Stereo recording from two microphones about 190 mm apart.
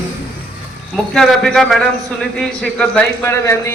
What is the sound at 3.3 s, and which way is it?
Speech, 15° left (ahead or behind).